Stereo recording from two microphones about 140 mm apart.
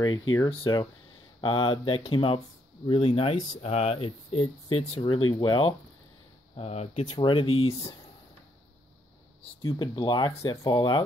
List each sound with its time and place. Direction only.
0.0 s speech: 30° left (ahead or behind)
6.5 s speech: 50° left (ahead or behind)
7.1 s speech: 35° left (ahead or behind)
9.7 s speech: 30° left (ahead or behind)